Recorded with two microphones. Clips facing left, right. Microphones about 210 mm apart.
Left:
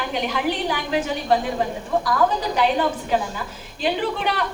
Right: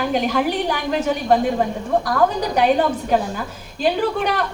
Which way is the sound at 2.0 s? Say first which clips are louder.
Even; 50° right (ahead or behind).